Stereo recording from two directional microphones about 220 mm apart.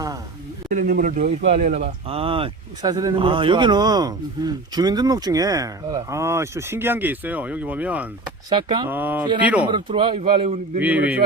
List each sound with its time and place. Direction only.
0.7 s speech: 40° right (ahead or behind); by 8.0 s 5° right (ahead or behind)
8.4 s speech: 20° right (ahead or behind)
8.9 s speech: 10° right (ahead or behind)
9.6 s speech: 20° right (ahead or behind)
10.8 s speech: 5° right (ahead or behind)